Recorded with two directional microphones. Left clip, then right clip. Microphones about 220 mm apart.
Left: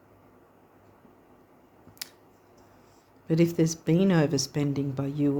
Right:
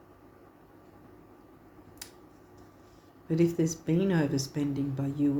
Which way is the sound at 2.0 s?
45° left (ahead or behind).